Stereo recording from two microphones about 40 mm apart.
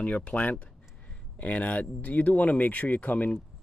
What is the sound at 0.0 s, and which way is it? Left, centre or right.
Speech, left.